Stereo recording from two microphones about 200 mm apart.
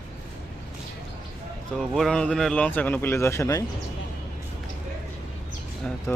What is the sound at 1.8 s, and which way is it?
Speech, centre (ahead or behind).